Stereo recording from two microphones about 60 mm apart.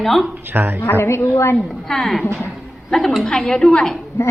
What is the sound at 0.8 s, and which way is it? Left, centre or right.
Speech, left.